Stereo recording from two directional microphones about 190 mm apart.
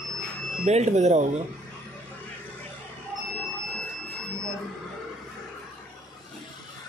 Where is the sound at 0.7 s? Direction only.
35° right (ahead or behind).